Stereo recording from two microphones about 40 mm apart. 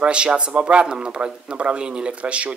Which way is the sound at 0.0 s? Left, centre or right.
Right.